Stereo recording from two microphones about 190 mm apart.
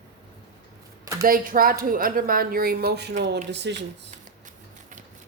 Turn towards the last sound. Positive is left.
turn(degrees=-65)  # may be behind; listen again after turning